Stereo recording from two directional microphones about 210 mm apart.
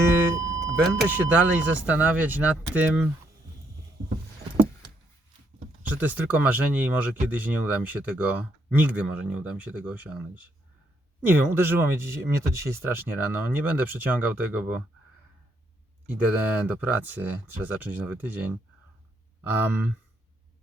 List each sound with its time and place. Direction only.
0.0 s speech: 10° right (ahead or behind)
5.9 s speech: 10° right (ahead or behind)
16.0 s speech: 5° right (ahead or behind)